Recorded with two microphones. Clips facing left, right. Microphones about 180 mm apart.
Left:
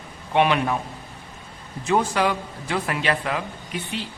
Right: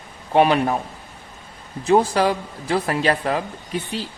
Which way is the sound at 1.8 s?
35° right (ahead or behind).